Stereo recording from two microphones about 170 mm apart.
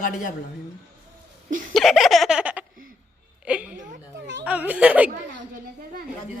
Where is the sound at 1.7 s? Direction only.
Centre (ahead or behind).